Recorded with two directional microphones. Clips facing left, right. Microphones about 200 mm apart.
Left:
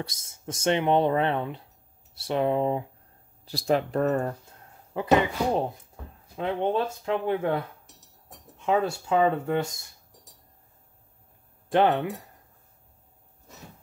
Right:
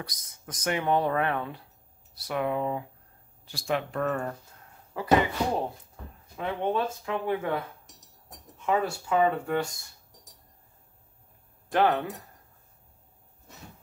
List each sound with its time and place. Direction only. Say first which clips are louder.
0.0 s speech: left 5 dB; 25° left (ahead or behind)
4.9 s speech: left 4 dB; 25° left (ahead or behind)
6.3 s speech: left 3 dB; 25° left (ahead or behind)
8.5 s speech: left 2 dB; 20° left (ahead or behind)
11.7 s speech: left 2 dB; 20° left (ahead or behind)